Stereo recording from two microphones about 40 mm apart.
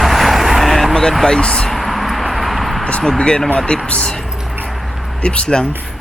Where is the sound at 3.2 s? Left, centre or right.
Left.